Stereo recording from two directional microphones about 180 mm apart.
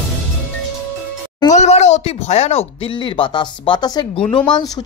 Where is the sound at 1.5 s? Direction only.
40° left (ahead or behind); by 4.3 s 20° left (ahead or behind).